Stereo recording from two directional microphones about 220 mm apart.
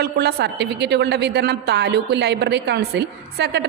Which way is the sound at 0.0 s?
45° right (ahead or behind).